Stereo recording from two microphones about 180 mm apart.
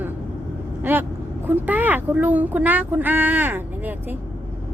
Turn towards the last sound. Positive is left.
turn(degrees=-10)  # may be behind; listen again after turning